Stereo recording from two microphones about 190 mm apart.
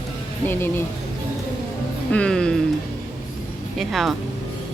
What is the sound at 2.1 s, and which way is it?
Speech, 5° left (ahead or behind).